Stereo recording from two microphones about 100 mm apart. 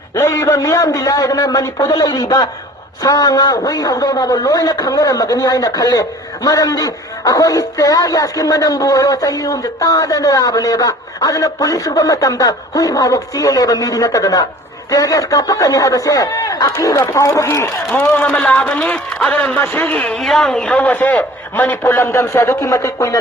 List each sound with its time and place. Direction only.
0.1 s speech: 30° left (ahead or behind)
17.9 s a man's voice: 20° left (ahead or behind)
20.1 s a man's voice: 5° left (ahead or behind); by 23.2 s 30° left (ahead or behind)